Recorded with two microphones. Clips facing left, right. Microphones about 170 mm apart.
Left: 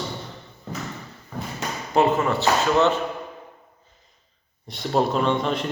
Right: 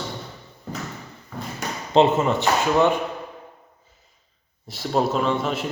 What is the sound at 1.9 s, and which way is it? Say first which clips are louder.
Speech: right 2 dB; 20° right (ahead or behind).